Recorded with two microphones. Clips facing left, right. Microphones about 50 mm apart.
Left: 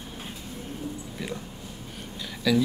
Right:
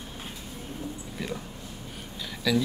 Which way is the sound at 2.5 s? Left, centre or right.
Centre.